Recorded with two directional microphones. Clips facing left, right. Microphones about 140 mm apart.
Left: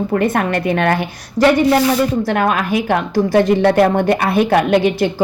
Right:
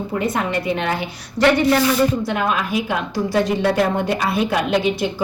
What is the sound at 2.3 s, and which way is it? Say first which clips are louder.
A woman's voice: left 5 dB; 60° left (ahead or behind).